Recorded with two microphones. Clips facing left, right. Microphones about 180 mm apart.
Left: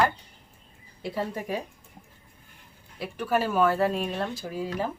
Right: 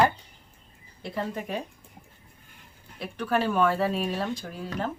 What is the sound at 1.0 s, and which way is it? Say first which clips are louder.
Speech: left 1 dB; 10° left (ahead or behind).